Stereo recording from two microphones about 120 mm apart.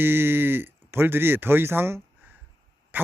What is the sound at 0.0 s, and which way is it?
A man's voice, 20° right (ahead or behind).